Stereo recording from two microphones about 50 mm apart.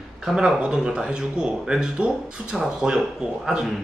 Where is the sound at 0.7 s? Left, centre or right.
Centre.